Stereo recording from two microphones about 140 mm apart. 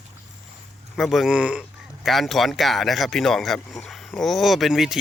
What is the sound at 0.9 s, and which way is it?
Speech, centre (ahead or behind).